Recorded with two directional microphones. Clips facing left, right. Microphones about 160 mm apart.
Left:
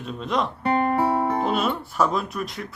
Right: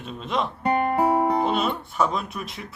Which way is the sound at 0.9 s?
20° right (ahead or behind).